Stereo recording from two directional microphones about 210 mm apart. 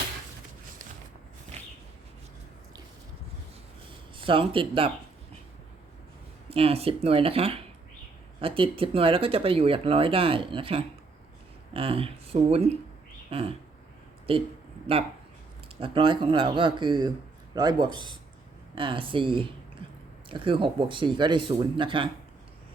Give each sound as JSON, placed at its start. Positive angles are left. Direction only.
{"t": 4.2, "sound": "speech", "side_deg": -25}
{"t": 6.5, "sound": "speech", "side_deg": -30}
{"t": 14.9, "sound": "speech", "side_deg": -30}